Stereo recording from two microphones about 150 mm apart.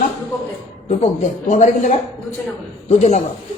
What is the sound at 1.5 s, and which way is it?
A man's voice, 55° left (ahead or behind).